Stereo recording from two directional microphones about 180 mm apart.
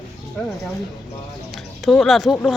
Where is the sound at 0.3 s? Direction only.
5° left (ahead or behind).